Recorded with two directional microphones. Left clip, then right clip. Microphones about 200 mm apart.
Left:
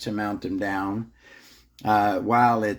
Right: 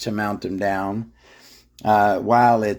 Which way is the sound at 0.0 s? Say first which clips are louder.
Right 4 dB; 55° right (ahead or behind).